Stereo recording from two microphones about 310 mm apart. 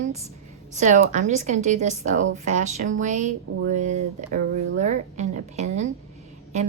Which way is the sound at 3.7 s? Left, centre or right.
Right.